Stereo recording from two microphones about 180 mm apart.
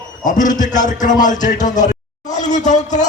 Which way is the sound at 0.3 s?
45° left (ahead or behind).